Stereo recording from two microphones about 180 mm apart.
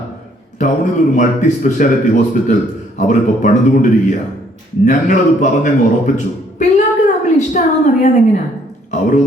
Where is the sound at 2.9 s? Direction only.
45° left (ahead or behind).